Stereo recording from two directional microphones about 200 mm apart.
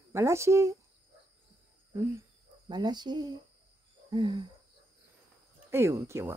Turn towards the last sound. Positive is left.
turn(degrees=-15)  # may be behind; listen again after turning